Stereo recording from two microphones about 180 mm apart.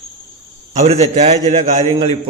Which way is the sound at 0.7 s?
40° right (ahead or behind).